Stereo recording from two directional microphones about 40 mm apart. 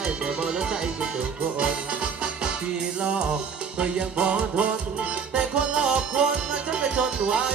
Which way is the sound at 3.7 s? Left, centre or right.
Right.